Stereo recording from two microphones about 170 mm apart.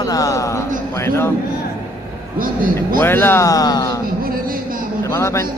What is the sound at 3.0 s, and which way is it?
Speech, 15° left (ahead or behind).